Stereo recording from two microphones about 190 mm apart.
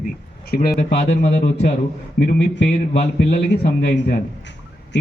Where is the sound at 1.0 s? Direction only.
55° left (ahead or behind).